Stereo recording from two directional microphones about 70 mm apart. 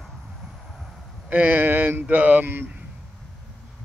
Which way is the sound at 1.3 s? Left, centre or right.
Right.